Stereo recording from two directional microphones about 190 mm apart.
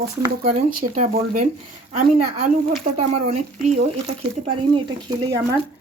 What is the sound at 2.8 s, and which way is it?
Speech, 35° right (ahead or behind).